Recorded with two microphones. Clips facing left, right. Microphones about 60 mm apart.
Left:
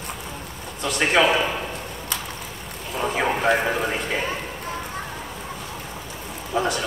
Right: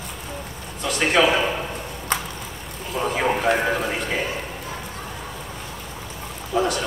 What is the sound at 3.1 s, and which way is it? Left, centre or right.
A man's voice, centre.